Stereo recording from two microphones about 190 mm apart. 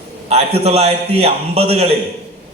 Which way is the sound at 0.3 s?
35° right (ahead or behind).